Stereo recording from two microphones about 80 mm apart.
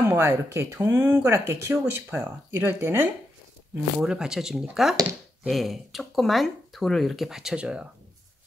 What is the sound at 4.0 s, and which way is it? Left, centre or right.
Speech, centre.